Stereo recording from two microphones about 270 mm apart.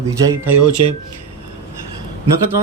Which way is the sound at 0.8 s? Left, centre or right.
Right.